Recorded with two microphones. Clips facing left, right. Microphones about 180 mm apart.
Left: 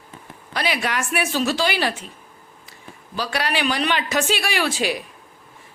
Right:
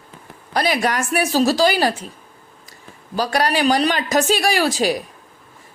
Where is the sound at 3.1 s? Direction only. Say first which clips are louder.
Right 5 dB; 40° right (ahead or behind).